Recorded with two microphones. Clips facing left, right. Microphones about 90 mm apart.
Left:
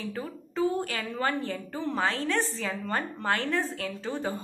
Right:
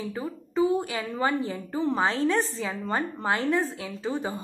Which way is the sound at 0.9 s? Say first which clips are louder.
Right 3 dB; 15° right (ahead or behind).